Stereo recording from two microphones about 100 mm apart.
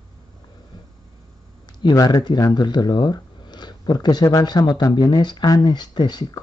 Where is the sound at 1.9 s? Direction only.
40° left (ahead or behind).